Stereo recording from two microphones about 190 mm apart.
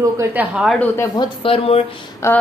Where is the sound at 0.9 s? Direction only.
15° left (ahead or behind).